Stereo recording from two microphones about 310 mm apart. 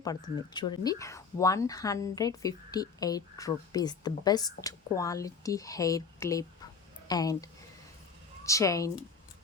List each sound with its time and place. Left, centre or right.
0.0 s speech: centre